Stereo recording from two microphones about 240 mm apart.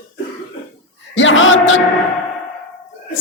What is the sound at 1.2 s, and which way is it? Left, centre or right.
Music, left.